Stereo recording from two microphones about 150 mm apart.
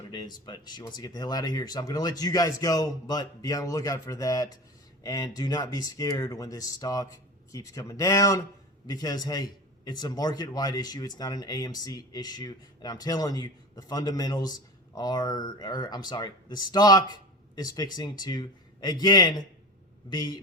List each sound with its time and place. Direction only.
0.1 s a man's voice: 30° left (ahead or behind)